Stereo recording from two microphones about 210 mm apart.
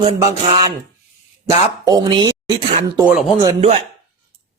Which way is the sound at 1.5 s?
15° right (ahead or behind).